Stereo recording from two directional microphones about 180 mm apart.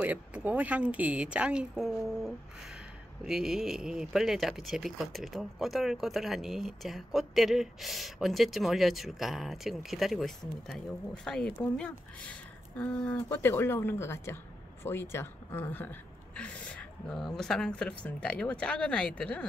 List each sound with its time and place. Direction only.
0.0 s speech: 10° right (ahead or behind)